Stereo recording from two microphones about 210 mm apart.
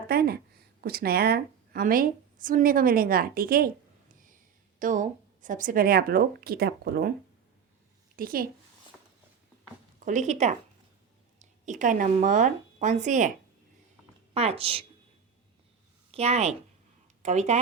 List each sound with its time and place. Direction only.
0.1 s a woman's voice: 45° right (ahead or behind)
4.8 s a woman's voice: 40° right (ahead or behind)
8.1 s a woman's voice: 45° right (ahead or behind)
10.1 s a woman's voice: 35° right (ahead or behind)
14.3 s a woman's voice: 30° right (ahead or behind)
16.1 s speech: 30° right (ahead or behind)